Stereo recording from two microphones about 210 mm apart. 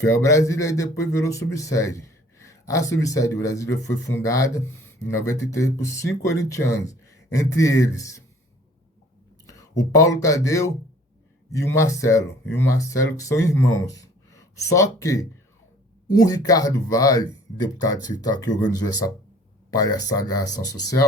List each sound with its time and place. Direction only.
0.0 s speech: 15° left (ahead or behind)
9.5 s speech: 15° left (ahead or behind)